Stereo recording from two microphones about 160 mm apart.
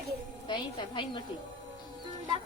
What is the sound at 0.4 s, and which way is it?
Speech, 30° left (ahead or behind).